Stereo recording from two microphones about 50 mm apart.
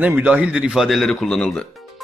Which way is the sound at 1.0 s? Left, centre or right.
Centre.